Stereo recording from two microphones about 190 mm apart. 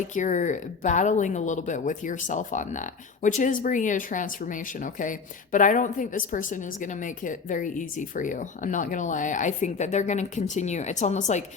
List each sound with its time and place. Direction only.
0.1 s speech: 40° left (ahead or behind)